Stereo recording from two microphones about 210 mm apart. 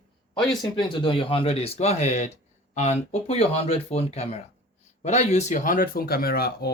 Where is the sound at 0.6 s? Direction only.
20° left (ahead or behind).